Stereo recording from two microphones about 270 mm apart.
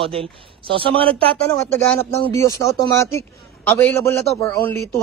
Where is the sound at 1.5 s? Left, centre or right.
Centre.